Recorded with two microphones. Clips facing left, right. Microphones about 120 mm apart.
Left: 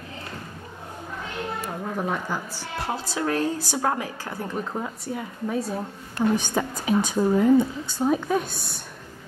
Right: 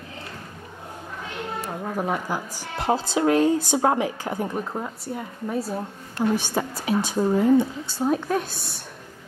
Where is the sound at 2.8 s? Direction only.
25° right (ahead or behind).